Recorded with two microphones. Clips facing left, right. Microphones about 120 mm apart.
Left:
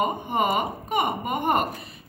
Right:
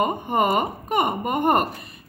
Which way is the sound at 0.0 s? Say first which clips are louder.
Right 3 dB; 50° right (ahead or behind).